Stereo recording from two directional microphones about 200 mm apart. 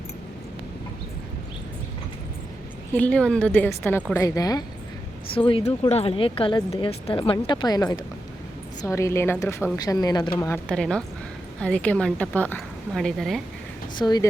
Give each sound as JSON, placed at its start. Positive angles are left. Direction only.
{"t": 2.9, "sound": "a woman's voice", "side_deg": 5}
{"t": 14.0, "sound": "speech", "side_deg": 20}